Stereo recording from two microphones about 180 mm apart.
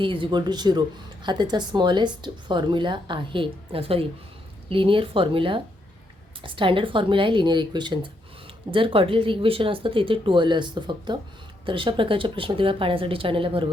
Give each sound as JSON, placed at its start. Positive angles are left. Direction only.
{"t": 0.0, "sound": "speech", "side_deg": -30}